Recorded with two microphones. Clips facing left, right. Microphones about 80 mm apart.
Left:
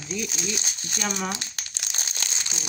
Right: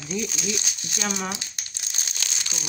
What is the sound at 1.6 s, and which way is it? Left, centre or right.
Crumpling, left.